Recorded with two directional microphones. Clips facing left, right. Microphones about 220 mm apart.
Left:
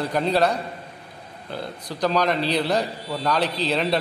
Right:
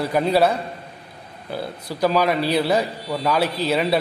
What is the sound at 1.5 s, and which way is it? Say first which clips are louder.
A man's voice: right 3 dB; 5° right (ahead or behind).